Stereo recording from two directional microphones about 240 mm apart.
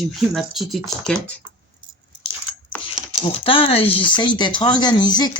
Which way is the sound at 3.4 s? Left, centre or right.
Left.